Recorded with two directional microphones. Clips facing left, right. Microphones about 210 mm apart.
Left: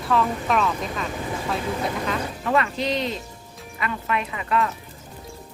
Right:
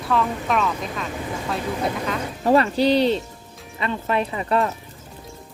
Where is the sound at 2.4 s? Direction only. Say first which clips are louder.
Right 7 dB; 35° right (ahead or behind).